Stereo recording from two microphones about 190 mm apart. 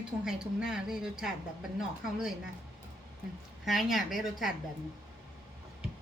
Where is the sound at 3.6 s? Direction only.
Centre (ahead or behind).